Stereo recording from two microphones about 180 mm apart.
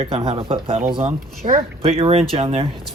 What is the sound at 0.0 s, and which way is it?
Speech, 35° right (ahead or behind).